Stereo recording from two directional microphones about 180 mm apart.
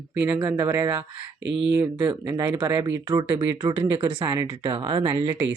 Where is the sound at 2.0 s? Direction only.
25° right (ahead or behind).